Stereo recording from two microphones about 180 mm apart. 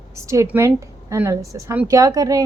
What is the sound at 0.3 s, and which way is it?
A woman's voice, 15° right (ahead or behind).